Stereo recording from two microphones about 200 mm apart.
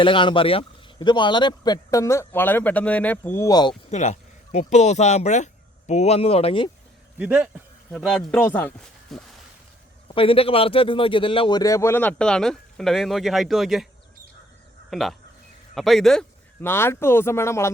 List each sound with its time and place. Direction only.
0.0 s a man's voice: 25° left (ahead or behind)
3.9 s a man's voice: 35° left (ahead or behind)
7.2 s speech: 5° right (ahead or behind)
10.1 s a man's voice: 25° left (ahead or behind); by 13.8 s centre (ahead or behind)
14.8 s a man's voice: centre (ahead or behind)